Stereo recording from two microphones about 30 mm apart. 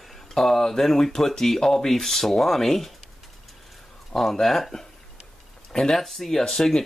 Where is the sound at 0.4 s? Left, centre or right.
Centre.